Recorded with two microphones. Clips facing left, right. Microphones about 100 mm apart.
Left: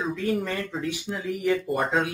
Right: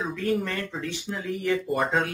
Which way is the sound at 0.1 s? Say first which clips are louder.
Even; 5° left (ahead or behind).